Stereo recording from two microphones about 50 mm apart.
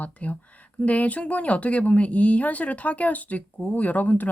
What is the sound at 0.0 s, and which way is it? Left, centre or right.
Speech, left.